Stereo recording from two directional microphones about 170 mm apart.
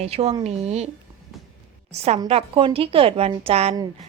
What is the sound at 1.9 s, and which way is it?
A woman's voice, 40° right (ahead or behind).